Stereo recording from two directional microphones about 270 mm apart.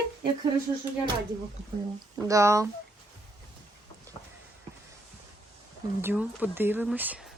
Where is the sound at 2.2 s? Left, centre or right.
Centre.